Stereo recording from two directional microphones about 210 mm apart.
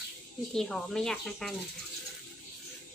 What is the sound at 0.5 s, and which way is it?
Speech, 5° left (ahead or behind).